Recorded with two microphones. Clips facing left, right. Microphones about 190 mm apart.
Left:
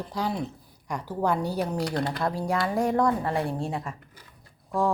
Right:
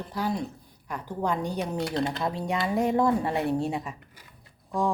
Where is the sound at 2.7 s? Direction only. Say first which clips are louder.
Right 1 dB; centre (ahead or behind).